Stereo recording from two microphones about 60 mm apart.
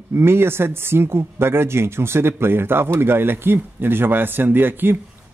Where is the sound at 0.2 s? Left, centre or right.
Right.